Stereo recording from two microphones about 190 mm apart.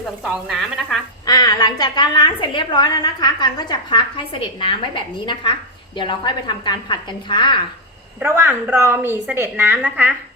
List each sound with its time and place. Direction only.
0.3 s speech: centre (ahead or behind)
1.3 s a woman's voice: 20° left (ahead or behind)
8.2 s a woman's voice: 10° right (ahead or behind)